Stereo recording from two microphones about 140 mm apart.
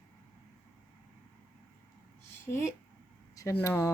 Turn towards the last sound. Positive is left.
turn(degrees=20)  # may be behind; listen again after turning